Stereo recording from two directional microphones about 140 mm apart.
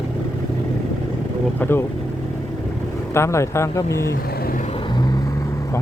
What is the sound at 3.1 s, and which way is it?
Speech, 20° left (ahead or behind).